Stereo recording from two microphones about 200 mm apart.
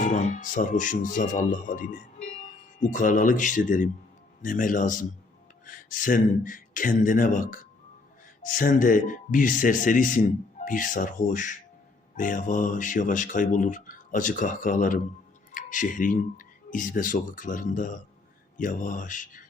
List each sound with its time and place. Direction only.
0.0 s speech: 35° left (ahead or behind)